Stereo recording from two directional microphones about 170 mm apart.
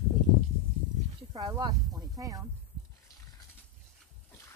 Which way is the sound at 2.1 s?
20° right (ahead or behind).